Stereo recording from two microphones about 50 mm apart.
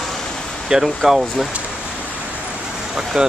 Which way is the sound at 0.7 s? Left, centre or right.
Centre.